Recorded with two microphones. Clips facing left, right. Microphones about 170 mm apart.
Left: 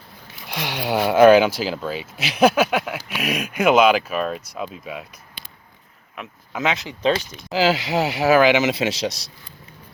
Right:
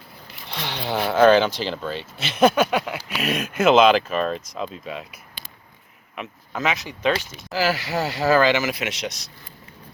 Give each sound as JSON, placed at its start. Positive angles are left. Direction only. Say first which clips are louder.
{"t": 0.4, "sound": "speech", "louder": "left 3 dB", "side_deg": 10}
{"t": 6.6, "sound": "speech", "louder": "left 2 dB", "side_deg": 20}